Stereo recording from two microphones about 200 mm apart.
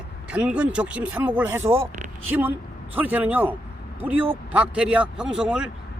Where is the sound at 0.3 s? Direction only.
5° right (ahead or behind).